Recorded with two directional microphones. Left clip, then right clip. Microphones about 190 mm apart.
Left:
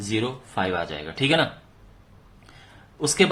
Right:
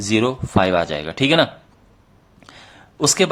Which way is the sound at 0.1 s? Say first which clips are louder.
Right 9 dB; 40° right (ahead or behind).